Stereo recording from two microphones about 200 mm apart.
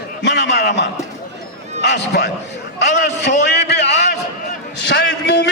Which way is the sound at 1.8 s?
55° left (ahead or behind).